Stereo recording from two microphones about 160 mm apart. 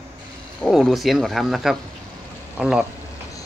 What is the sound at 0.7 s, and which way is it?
Speech, centre (ahead or behind).